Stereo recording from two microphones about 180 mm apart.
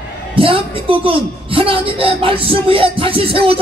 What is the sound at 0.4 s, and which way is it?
A woman's voice, 30° right (ahead or behind).